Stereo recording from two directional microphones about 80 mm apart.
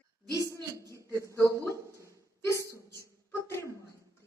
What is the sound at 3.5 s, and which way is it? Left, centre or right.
Speech, left.